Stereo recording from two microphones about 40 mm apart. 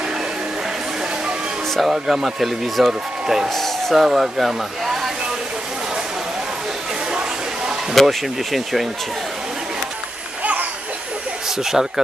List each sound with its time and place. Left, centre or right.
1.7 s speech: centre
3.5 s speech: centre
7.1 s a sound: centre
7.9 s speech: centre
10.4 s a sound: right
11.4 s speech: centre